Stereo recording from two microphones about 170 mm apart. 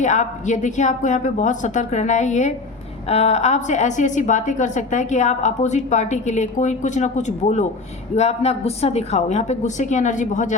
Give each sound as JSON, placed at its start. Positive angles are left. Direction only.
{"t": 0.0, "sound": "a woman's voice", "side_deg": 45}